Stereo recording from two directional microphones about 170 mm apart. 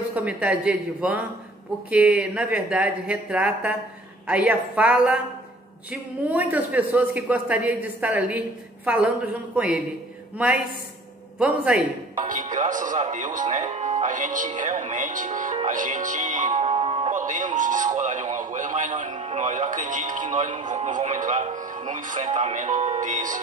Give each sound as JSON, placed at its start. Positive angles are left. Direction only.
{"t": 0.1, "sound": "speech", "side_deg": -10}
{"t": 6.2, "sound": "speech", "side_deg": -10}
{"t": 11.3, "sound": "a man's voice", "side_deg": -5}
{"t": 12.3, "sound": "speech", "side_deg": -50}
{"t": 16.6, "sound": "music", "side_deg": -35}
{"t": 17.1, "sound": "speech", "side_deg": -50}